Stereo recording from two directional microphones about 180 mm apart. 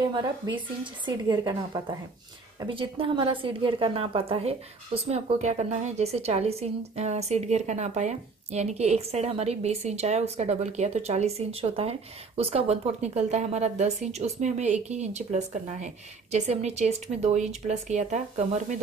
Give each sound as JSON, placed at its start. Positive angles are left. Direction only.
{"t": 0.1, "sound": "a woman's voice", "side_deg": -25}